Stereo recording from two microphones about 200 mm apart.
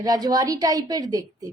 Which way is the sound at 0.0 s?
20° right (ahead or behind).